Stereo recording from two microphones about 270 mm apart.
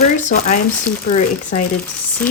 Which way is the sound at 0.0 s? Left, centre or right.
Left.